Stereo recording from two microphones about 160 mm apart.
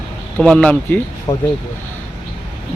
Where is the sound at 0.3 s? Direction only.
5° left (ahead or behind).